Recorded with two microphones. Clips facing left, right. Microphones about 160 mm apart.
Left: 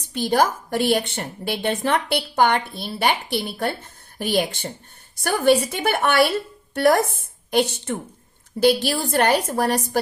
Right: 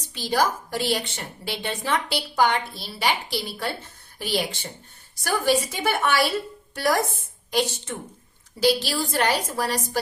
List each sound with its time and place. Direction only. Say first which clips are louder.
0.1 s a woman's voice: left 4 dB; 55° left (ahead or behind)